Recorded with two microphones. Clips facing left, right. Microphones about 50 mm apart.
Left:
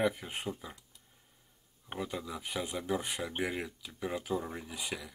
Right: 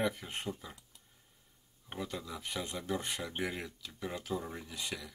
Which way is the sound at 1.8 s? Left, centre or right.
Centre.